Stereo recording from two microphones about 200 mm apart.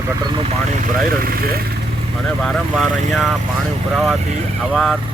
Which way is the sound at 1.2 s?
50° right (ahead or behind).